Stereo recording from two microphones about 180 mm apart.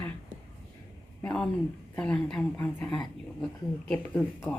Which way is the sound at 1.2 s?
10° left (ahead or behind).